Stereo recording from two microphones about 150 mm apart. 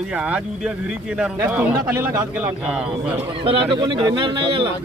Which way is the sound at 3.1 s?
35° right (ahead or behind).